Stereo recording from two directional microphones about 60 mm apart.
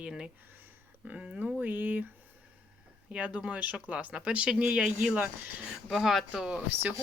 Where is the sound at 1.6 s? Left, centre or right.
Right.